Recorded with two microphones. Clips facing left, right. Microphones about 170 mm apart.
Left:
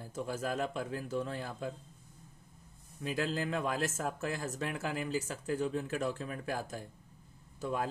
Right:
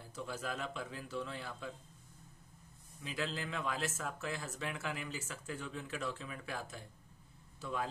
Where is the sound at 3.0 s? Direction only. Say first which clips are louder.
Left 6 dB; 45° left (ahead or behind).